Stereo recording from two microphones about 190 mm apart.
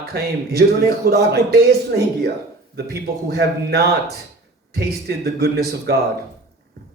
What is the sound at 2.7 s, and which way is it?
A man's voice, 55° right (ahead or behind).